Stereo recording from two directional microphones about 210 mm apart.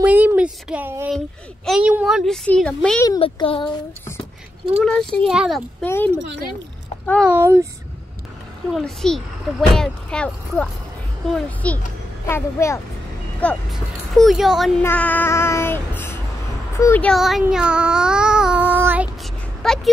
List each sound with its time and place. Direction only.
0.0 s a sound: 5° right (ahead or behind)
1.7 s speech: 5° right (ahead or behind)
3.1 s speech: 25° left (ahead or behind)
4.8 s speech: 5° left (ahead or behind)
5.9 s child singing: 10° left (ahead or behind)
7.1 s speech: 5° right (ahead or behind)
8.7 s speech: centre (ahead or behind)
12.3 s child singing: 10° left (ahead or behind)
13.4 s speech: 5° left (ahead or behind)
14.8 s child singing: 10° left (ahead or behind)
16.7 s speech: 10° left (ahead or behind); by 19.0 s 10° right (ahead or behind)
19.6 s speech: centre (ahead or behind)